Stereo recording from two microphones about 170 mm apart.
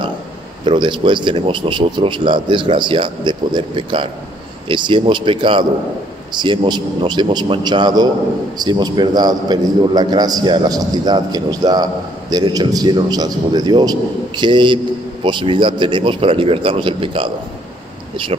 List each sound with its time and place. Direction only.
0.7 s a man's voice: 30° right (ahead or behind)